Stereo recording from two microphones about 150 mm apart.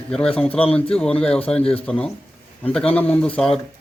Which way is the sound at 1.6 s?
40° left (ahead or behind).